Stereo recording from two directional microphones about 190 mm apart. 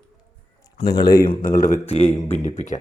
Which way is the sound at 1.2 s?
45° left (ahead or behind).